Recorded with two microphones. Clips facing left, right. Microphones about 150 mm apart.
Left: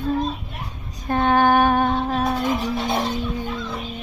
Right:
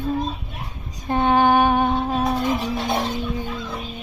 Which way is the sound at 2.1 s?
Centre (ahead or behind).